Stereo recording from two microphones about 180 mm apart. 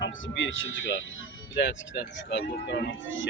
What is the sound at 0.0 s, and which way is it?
Speech, 90° left.